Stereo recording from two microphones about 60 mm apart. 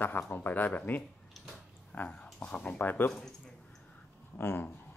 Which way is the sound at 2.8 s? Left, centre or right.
Left.